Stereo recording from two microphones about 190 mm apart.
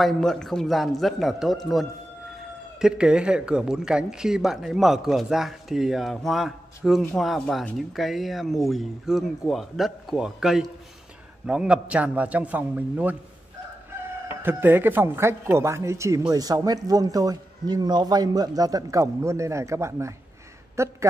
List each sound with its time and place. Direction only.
0.0 s speech: 5° left (ahead or behind)
14.4 s a man's voice: 10° right (ahead or behind)